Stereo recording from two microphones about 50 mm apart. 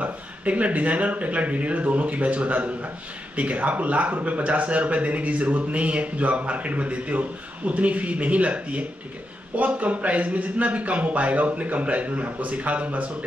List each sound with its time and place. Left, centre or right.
0.0 s speech: right